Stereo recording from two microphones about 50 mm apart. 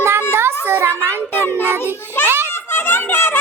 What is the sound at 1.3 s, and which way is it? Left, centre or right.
Child singing, left.